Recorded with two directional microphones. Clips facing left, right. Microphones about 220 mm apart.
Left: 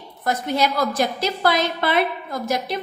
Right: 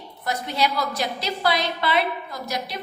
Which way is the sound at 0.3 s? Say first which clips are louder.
Left 4 dB; 50° left (ahead or behind).